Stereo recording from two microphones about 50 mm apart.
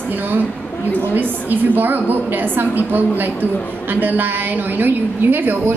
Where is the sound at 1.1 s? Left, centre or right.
Right.